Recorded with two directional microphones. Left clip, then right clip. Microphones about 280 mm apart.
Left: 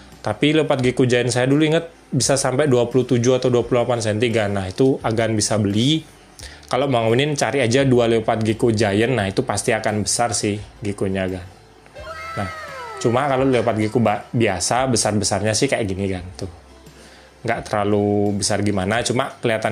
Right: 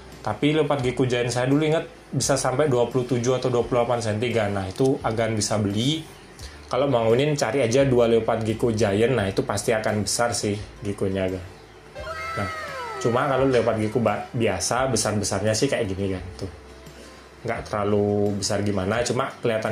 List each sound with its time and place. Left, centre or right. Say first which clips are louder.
0.2 s speech: left 4 dB; left
12.0 s cat: left 1 dB; centre
13.0 s speech: left 3 dB; left
17.5 s speech: left 5 dB; left